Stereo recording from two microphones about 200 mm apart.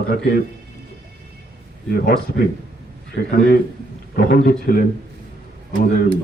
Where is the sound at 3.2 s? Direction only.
55° left (ahead or behind).